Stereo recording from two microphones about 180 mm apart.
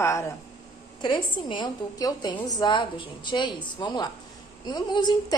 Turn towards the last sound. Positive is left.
turn(degrees=25)  # may be behind; listen again after turning